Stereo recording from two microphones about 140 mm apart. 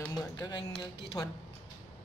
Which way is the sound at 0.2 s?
30° left (ahead or behind).